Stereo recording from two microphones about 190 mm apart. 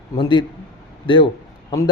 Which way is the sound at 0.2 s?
25° left (ahead or behind).